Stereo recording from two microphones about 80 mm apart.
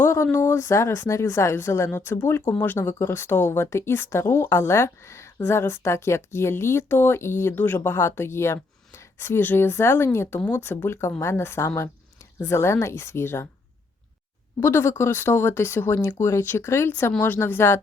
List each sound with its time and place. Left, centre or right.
0.0 s a sound: left
0.3 s speech: left
14.6 s speech: left